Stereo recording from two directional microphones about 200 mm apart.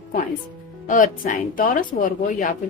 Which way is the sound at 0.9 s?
40° left (ahead or behind).